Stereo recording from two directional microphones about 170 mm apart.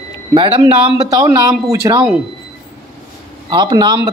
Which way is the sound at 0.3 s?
30° right (ahead or behind).